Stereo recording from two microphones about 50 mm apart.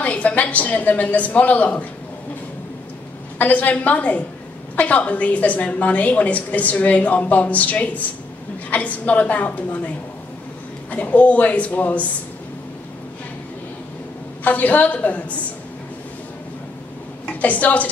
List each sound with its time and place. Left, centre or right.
0.0 s a woman's voice: left
3.3 s a woman's voice: left
10.9 s a woman's voice: left
14.4 s a woman's voice: left
17.3 s a woman's voice: left